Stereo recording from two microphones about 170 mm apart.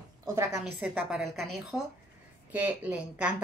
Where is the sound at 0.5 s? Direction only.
5° right (ahead or behind).